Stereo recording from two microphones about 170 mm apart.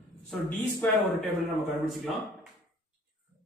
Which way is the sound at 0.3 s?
10° left (ahead or behind).